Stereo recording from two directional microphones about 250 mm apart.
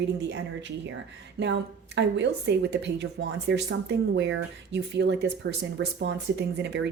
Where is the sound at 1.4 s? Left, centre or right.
Right.